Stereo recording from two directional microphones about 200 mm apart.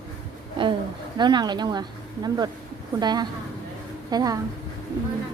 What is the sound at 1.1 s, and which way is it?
A woman's voice, 20° right (ahead or behind).